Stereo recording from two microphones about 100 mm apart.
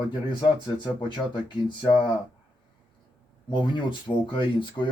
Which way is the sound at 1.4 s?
50° left (ahead or behind).